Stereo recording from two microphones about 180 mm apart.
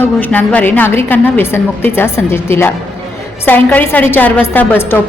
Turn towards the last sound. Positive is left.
turn(degrees=10)  # may be behind; listen again after turning